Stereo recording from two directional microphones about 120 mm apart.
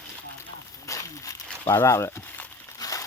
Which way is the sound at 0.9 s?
30° left (ahead or behind).